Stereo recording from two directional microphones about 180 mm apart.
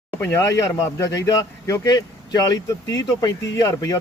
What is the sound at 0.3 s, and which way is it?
A man's voice, 15° left (ahead or behind).